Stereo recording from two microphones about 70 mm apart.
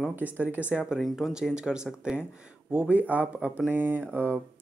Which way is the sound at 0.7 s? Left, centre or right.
Centre.